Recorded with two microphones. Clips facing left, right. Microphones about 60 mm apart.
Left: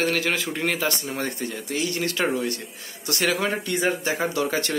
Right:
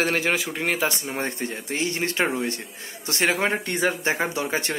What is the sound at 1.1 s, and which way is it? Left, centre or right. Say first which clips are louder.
Speech: even; right.